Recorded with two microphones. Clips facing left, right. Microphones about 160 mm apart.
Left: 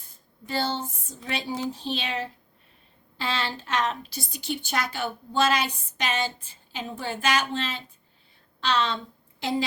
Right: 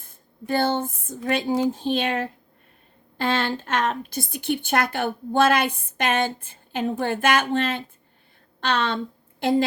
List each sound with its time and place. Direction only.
0.0 s a woman's voice: 50° right (ahead or behind)